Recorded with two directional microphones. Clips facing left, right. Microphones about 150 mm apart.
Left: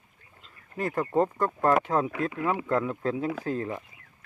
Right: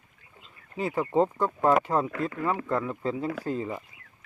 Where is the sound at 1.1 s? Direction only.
15° right (ahead or behind).